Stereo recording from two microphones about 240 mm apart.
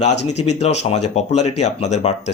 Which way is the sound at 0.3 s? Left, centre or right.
Left.